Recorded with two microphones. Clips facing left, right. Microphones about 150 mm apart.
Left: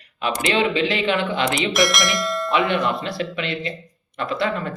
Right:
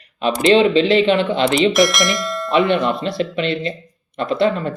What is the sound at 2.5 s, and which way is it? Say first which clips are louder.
A man's voice: right 5 dB; 20° right (ahead or behind).